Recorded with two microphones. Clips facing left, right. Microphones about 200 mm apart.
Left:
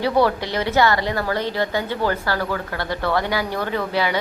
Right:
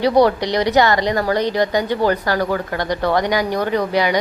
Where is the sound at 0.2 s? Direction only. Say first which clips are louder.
Right 4 dB; 15° right (ahead or behind).